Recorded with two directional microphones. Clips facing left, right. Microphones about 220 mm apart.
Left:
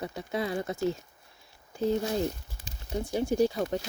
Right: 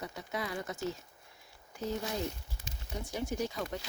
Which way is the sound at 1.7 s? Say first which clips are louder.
Left 8 dB; 30° left (ahead or behind).